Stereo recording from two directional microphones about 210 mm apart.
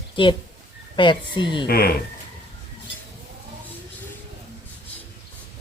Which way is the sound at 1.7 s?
45° left (ahead or behind).